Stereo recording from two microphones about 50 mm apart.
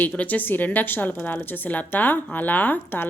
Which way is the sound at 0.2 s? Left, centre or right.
Left.